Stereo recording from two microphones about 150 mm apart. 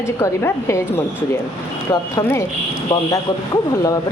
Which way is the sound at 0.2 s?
15° left (ahead or behind).